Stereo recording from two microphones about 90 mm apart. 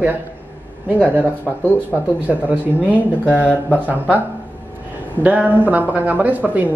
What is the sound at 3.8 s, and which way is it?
Speech, 15° right (ahead or behind).